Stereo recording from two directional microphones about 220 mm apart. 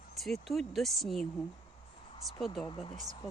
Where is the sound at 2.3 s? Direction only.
Centre (ahead or behind).